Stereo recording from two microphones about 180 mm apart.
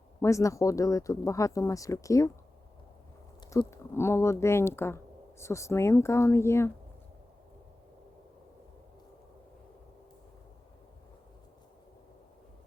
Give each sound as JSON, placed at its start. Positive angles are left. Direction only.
{"t": 0.2, "sound": "speech", "side_deg": 15}
{"t": 3.6, "sound": "speech", "side_deg": 15}